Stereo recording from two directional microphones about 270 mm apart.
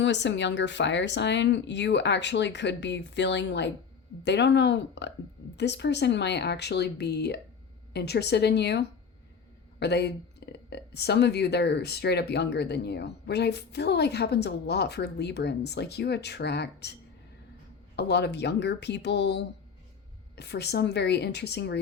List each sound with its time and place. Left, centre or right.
0.0 s speech: left